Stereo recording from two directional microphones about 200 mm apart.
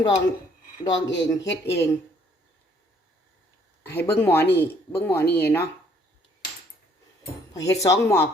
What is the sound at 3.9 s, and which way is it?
A woman's voice, 10° left (ahead or behind).